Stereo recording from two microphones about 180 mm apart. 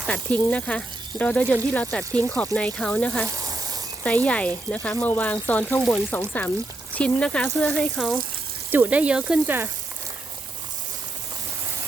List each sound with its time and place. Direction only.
0.1 s speech: 5° left (ahead or behind)
3.2 s snake: 20° right (ahead or behind)
4.0 s speech: 5° left (ahead or behind)